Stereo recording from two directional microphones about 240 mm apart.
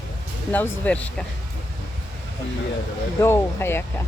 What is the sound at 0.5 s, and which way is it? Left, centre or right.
Speech, centre.